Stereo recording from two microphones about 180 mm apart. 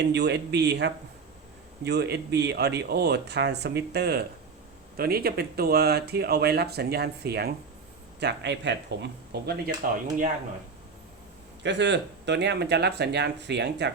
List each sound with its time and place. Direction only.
0.0 s speech: 70° right (ahead or behind)
11.6 s speech: 80° right